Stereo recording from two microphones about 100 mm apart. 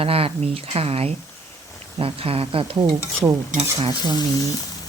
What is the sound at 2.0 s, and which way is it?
Speech, 70° right (ahead or behind).